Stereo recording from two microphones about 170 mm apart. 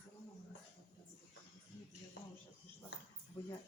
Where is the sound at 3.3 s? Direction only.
10° left (ahead or behind).